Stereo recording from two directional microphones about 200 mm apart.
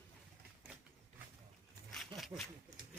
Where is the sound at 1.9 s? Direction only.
Centre (ahead or behind).